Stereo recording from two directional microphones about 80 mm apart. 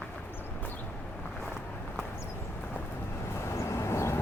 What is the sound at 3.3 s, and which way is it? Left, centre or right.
Vehicle, left.